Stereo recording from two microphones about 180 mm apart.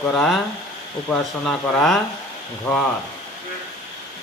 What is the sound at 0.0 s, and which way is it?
Speech, 5° left (ahead or behind).